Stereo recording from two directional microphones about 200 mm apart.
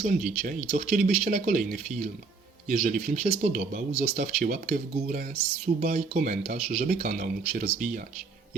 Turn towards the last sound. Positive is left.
turn(degrees=-45)  # may be behind; listen again after turning